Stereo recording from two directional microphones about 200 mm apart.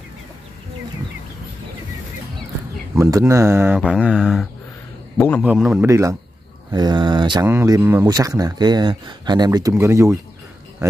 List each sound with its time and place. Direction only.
2.9 s speech: 15° right (ahead or behind)
5.1 s a man's voice: 10° left (ahead or behind)
5.4 s a man's voice: 5° right (ahead or behind)
5.9 s speech: 15° right (ahead or behind)